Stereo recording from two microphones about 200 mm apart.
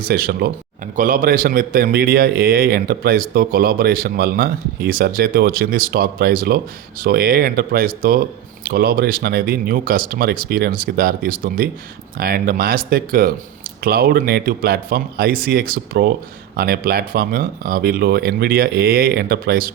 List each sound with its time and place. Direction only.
0.0 s speech: 50° right (ahead or behind)